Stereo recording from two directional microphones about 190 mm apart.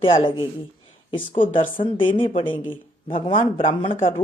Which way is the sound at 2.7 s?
25° left (ahead or behind).